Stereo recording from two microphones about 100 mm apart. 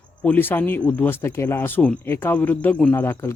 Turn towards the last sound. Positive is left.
turn(degrees=25)  # may be behind; listen again after turning